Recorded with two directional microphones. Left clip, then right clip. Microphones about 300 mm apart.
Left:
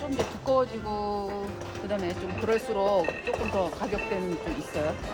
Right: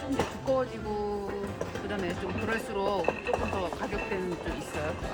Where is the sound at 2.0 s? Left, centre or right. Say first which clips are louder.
Left 4 dB; left.